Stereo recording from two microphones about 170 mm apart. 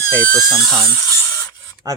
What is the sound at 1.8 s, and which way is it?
Speech, 20° right (ahead or behind).